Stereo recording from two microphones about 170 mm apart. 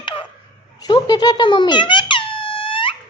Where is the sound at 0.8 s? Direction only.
25° left (ahead or behind).